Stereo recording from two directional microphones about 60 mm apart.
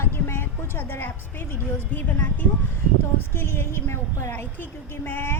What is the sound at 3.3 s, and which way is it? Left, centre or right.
A woman's voice, left.